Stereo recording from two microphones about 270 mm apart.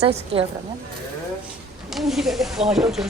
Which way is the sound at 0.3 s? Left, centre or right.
Right.